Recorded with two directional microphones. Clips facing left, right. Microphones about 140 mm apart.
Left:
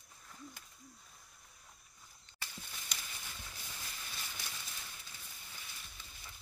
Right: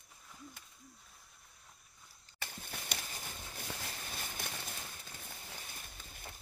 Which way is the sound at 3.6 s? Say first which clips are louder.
Right 10 dB; 60° right (ahead or behind).